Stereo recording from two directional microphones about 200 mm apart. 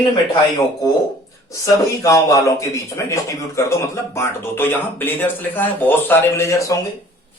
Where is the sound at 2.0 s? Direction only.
15° left (ahead or behind).